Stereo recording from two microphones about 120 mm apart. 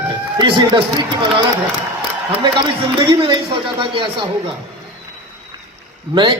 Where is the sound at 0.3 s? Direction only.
40° right (ahead or behind).